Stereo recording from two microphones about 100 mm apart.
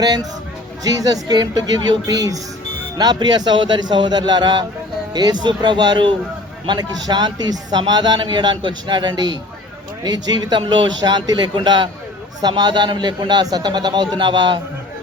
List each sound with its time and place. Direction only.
0.0 s a man's voice: 40° right (ahead or behind)